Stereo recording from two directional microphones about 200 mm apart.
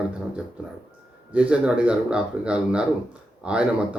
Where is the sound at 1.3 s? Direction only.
5° right (ahead or behind).